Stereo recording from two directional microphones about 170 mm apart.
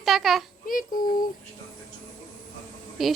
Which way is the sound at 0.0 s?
Centre (ahead or behind).